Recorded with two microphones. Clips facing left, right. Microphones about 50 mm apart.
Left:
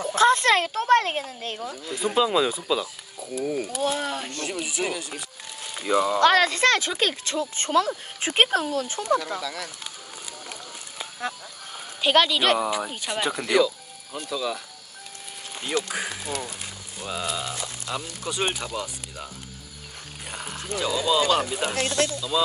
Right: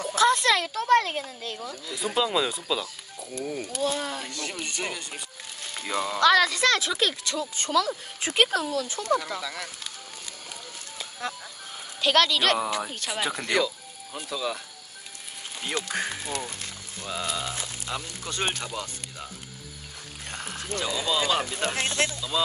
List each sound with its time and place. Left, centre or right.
0.1 s speech: left
2.0 s speech: centre
4.0 s speech: left
4.5 s speech: centre
6.1 s speech: left
9.4 s speech: centre
12.0 s speech: centre
15.9 s speech: centre
17.9 s speech: centre
18.2 s speech: centre
20.2 s ratchet: centre
20.8 s speech: centre
21.8 s speech: right
22.3 s speech: centre